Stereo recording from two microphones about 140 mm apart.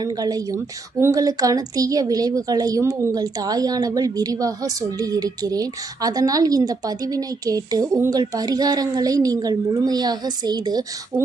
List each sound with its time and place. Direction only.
0.0 s a woman's voice: 25° right (ahead or behind)